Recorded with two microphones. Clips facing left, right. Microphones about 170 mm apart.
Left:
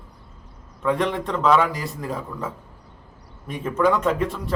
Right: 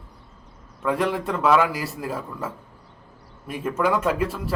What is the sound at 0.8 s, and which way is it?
Speech, 5° right (ahead or behind).